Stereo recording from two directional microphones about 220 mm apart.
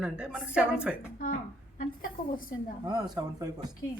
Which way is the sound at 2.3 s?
40° left (ahead or behind).